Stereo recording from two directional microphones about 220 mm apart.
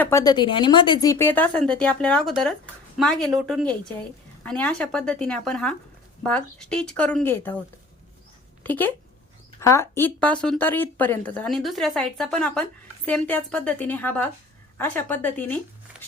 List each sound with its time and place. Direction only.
0.0 s speech: 15° left (ahead or behind)
8.6 s speech: 10° left (ahead or behind)